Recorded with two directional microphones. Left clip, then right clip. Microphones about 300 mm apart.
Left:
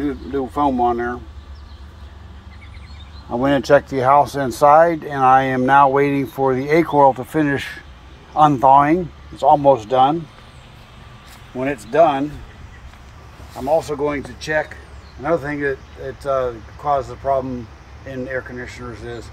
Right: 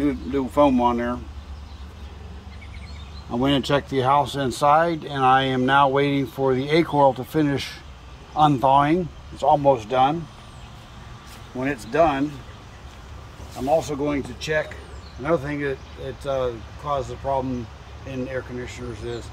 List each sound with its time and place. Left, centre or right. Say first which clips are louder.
0.8 s speech: left 3 dB; centre
3.3 s speech: left 7 dB; centre; by 10.1 s left
11.6 s speech: left 5 dB; left
13.7 s speech: left 5 dB; centre